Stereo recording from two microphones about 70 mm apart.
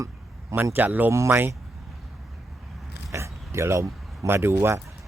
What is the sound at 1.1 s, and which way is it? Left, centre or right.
Speech, right.